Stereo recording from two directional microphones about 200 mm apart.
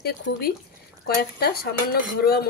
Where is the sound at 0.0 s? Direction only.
50° left (ahead or behind).